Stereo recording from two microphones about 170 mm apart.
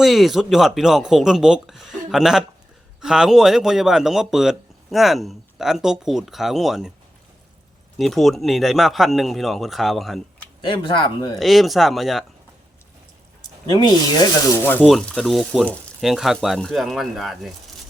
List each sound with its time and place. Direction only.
0.0 s speech: centre (ahead or behind)
7.9 s speech: centre (ahead or behind)
10.6 s speech: 30° left (ahead or behind)
11.3 s speech: centre (ahead or behind)
13.7 s speech: 25° left (ahead or behind)
14.6 s speech: 10° left (ahead or behind)
14.8 s speech: centre (ahead or behind)